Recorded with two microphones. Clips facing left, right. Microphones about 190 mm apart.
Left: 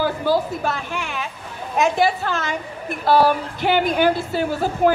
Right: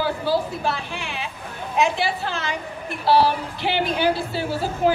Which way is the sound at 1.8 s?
45° left (ahead or behind).